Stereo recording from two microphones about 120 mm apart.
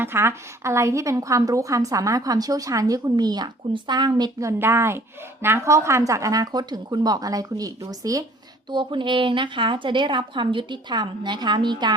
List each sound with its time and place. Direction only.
0.0 s a woman's voice: 20° right (ahead or behind)
8.7 s a woman's voice: 40° right (ahead or behind)